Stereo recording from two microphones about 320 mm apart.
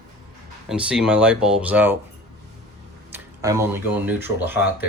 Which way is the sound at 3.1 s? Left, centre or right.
Centre.